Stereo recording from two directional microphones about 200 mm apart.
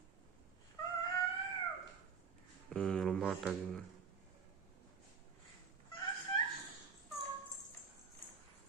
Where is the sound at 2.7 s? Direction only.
5° left (ahead or behind).